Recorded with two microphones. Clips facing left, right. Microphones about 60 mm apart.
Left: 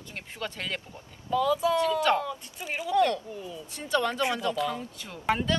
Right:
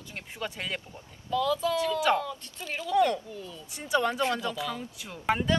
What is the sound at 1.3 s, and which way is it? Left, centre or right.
Speech, centre.